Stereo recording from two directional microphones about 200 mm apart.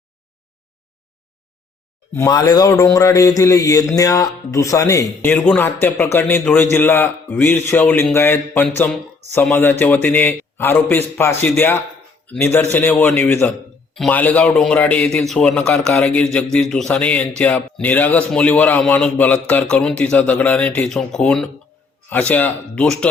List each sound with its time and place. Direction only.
2.1 s a man's voice: 20° left (ahead or behind)